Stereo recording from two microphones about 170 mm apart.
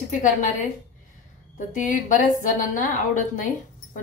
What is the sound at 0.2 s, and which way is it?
Speech, 50° left (ahead or behind).